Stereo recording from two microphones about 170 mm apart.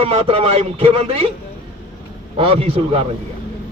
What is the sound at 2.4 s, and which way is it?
Speech, 35° right (ahead or behind).